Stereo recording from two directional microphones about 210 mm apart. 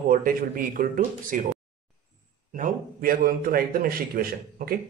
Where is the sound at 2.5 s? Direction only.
40° right (ahead or behind).